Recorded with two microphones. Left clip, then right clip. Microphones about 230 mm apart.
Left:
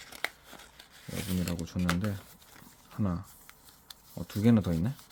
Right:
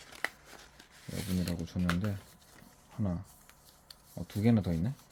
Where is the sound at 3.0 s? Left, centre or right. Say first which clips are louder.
Left 3 dB; centre.